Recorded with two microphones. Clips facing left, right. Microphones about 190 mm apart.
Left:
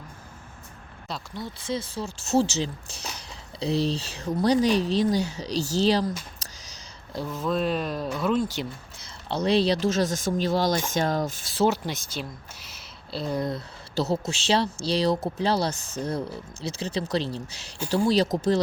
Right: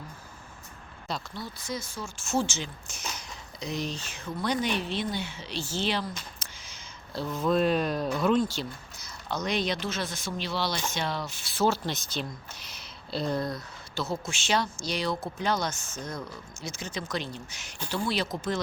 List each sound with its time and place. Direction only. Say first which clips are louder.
1.4 s speech: left 5 dB; 25° left (ahead or behind)
6.4 s a sound: left 2 dB; 40° left (ahead or behind)
7.3 s speech: right 2 dB; centre (ahead or behind)
8.5 s speech: left 3 dB; 30° left (ahead or behind); by 11.6 s 45° left (ahead or behind)
11.6 s speech: left 3 dB; 15° left (ahead or behind)
13.3 s speech: left 5 dB; 20° left (ahead or behind)
13.9 s speech: left 6 dB; 35° left (ahead or behind)